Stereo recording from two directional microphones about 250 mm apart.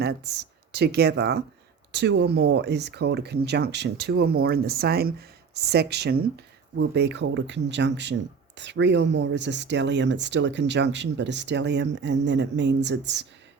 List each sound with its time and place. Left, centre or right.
0.0 s speech: right